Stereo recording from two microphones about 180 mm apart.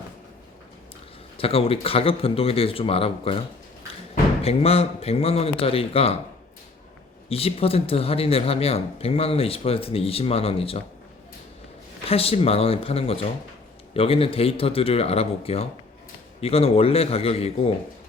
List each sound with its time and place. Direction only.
1.4 s speech: 30° left (ahead or behind)
4.4 s speech: 35° left (ahead or behind)
7.3 s speech: 35° left (ahead or behind)
12.0 s speech: 35° left (ahead or behind)